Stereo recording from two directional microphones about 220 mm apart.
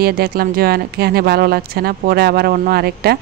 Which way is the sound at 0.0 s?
45° right (ahead or behind).